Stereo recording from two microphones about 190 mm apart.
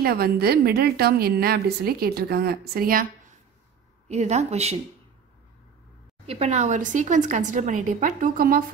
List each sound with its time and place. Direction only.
0.0 s a woman's voice: 55° right (ahead or behind)
4.1 s speech: 35° right (ahead or behind)
6.2 s speech: 35° right (ahead or behind); by 8.6 s 50° right (ahead or behind)